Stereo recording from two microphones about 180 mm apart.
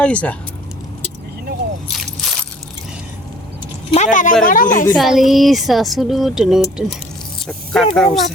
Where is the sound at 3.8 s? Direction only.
40° left (ahead or behind).